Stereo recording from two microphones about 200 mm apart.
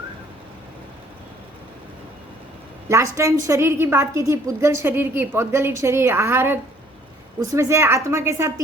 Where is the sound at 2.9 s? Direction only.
15° right (ahead or behind).